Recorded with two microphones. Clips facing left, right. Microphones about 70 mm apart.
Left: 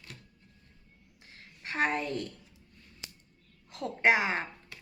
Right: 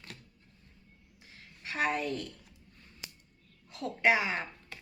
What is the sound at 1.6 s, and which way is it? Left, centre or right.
Speech, left.